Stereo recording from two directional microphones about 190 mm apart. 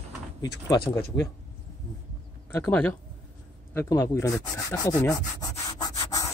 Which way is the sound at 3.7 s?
15° left (ahead or behind).